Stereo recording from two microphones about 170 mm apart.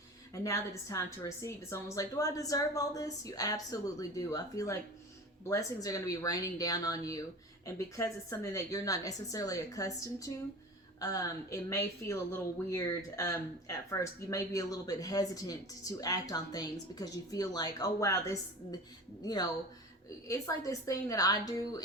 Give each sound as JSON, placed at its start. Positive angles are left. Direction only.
{"t": 0.4, "sound": "speech", "side_deg": 20}